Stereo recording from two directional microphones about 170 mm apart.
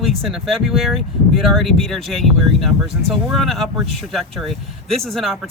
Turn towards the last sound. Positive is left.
turn(degrees=0)  # may be behind; listen again after turning